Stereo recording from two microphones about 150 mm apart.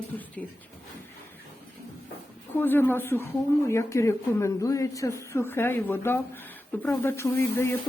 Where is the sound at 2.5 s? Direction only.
15° left (ahead or behind).